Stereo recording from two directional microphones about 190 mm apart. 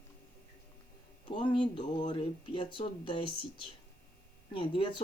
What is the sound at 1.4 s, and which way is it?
Speech, 25° left (ahead or behind).